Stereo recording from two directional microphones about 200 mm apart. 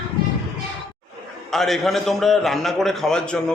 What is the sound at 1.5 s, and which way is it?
A man's voice, centre (ahead or behind).